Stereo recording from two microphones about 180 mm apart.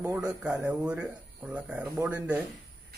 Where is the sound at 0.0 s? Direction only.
15° right (ahead or behind).